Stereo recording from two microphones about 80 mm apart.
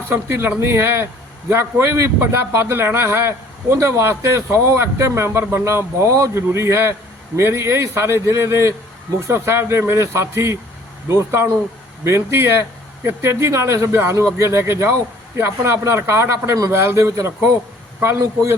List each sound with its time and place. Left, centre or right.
0.1 s a man's voice: right